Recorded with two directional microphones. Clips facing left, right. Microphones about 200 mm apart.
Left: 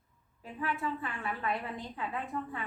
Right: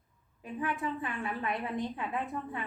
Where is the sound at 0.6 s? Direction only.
20° right (ahead or behind).